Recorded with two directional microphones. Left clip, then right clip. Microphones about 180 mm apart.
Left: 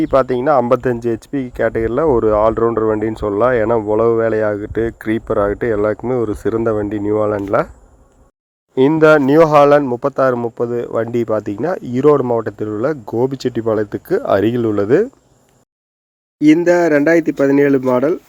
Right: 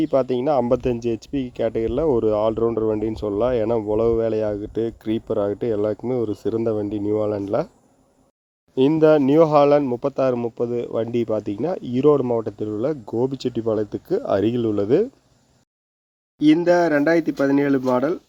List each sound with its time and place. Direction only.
0.1 s speech: 5° left (ahead or behind)
1.3 s speech: 50° left (ahead or behind)
1.5 s speech: 5° left (ahead or behind)
9.0 s speech: 10° left (ahead or behind)
16.4 s speech: 20° left (ahead or behind)